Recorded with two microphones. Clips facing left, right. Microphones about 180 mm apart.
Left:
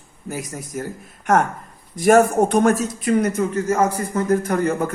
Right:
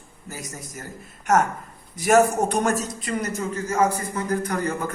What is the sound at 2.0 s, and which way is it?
A man's voice, 50° left (ahead or behind).